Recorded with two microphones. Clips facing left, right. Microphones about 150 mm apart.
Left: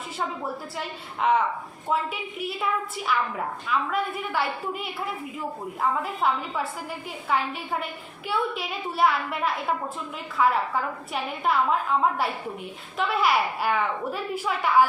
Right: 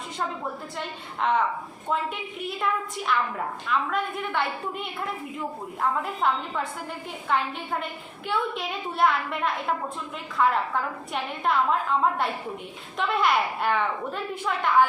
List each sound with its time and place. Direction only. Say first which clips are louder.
0.8 s a woman's voice: left 1 dB; 5° left (ahead or behind)